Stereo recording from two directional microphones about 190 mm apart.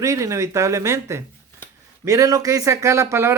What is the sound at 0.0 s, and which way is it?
Speech, 15° right (ahead or behind).